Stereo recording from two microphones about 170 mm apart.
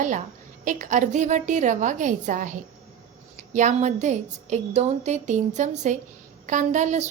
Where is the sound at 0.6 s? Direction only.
50° right (ahead or behind).